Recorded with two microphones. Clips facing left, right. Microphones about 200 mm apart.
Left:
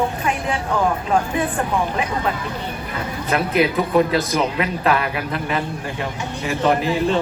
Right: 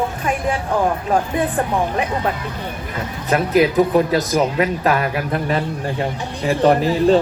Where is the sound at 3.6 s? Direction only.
45° right (ahead or behind).